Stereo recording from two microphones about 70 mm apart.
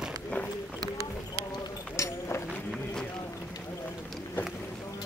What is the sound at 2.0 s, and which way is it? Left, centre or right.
Run, left.